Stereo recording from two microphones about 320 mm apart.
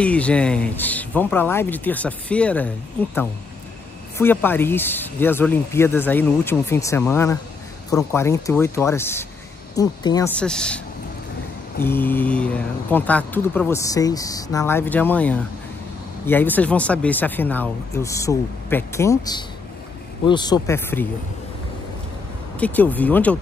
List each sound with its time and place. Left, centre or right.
0.0 s speech: centre
4.2 s speech: centre
11.8 s speech: centre
22.6 s speech: centre